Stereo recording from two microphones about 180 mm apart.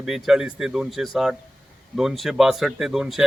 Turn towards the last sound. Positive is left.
turn(degrees=0)  # may be behind; listen again after turning